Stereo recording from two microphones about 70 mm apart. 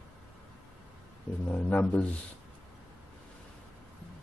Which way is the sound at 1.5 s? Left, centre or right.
Centre.